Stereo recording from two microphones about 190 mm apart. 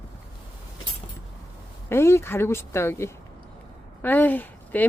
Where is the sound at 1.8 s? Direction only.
15° left (ahead or behind).